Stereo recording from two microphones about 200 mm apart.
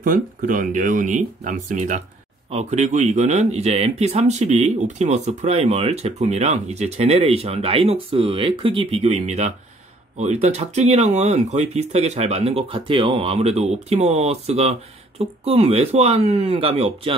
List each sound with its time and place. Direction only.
0.0 s speech: 45° right (ahead or behind)